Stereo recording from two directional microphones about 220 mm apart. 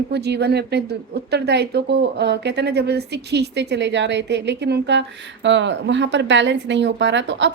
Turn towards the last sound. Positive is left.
turn(degrees=-55)  # may be behind; listen again after turning